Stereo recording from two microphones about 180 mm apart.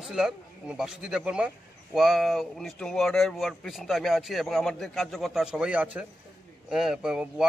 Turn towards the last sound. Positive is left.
turn(degrees=-5)  # may be behind; listen again after turning